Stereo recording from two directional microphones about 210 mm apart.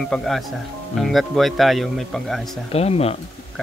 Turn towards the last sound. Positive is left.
turn(degrees=30)  # may be behind; listen again after turning